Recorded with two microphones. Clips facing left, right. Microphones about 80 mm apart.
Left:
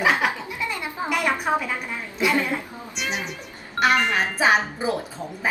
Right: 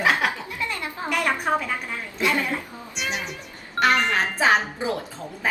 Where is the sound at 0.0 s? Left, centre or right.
Centre.